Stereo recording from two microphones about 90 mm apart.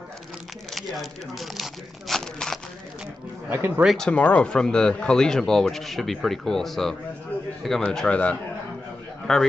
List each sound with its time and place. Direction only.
1.4 s speech: centre (ahead or behind)
3.4 s speech: 25° right (ahead or behind)
3.9 s a man's voice: 5° left (ahead or behind)